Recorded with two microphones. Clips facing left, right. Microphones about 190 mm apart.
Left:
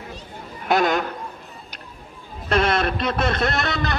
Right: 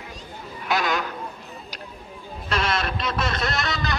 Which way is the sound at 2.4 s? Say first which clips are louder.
Left 6 dB; 55° left (ahead or behind).